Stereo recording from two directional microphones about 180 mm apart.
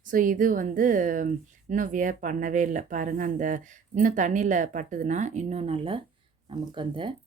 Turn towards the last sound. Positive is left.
turn(degrees=-25)  # may be behind; listen again after turning